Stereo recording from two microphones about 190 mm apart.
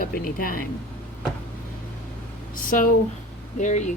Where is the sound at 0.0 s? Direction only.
50° left (ahead or behind).